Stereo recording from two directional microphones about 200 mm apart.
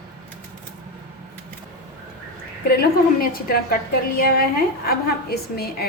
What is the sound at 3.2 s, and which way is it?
A woman's voice, 45° left (ahead or behind).